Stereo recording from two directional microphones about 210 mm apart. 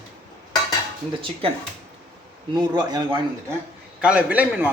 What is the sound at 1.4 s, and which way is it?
Speech, 25° right (ahead or behind).